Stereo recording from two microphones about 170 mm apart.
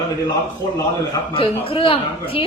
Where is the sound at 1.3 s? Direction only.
30° left (ahead or behind).